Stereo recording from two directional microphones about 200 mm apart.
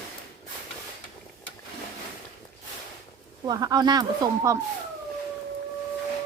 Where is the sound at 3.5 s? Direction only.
20° right (ahead or behind).